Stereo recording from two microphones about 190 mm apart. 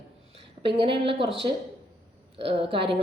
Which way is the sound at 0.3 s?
30° right (ahead or behind).